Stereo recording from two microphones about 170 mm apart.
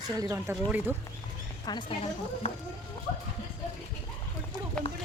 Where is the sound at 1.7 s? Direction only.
25° left (ahead or behind).